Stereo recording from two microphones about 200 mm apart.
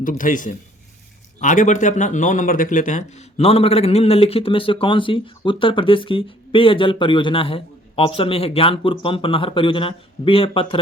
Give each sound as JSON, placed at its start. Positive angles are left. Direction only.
{"t": 0.0, "sound": "speech", "side_deg": 40}